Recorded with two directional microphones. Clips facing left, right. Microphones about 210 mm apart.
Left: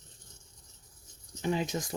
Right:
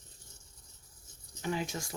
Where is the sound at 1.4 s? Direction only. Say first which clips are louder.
Left 4 dB; 20° left (ahead or behind).